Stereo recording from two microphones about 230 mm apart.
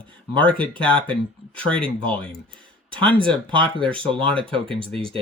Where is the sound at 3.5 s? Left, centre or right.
Right.